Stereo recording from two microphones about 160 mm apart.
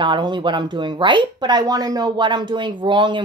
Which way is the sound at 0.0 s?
30° right (ahead or behind).